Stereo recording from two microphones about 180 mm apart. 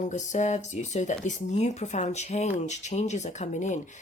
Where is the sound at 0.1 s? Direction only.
40° left (ahead or behind).